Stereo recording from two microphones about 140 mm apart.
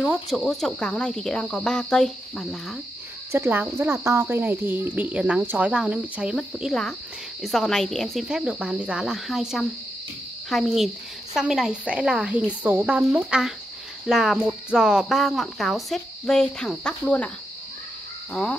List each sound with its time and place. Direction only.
0.0 s speech: centre (ahead or behind)
3.3 s speech: 15° right (ahead or behind); by 17.3 s 5° left (ahead or behind)
18.3 s speech: 5° left (ahead or behind)